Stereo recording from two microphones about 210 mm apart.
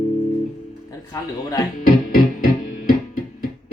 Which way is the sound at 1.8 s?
45° left (ahead or behind).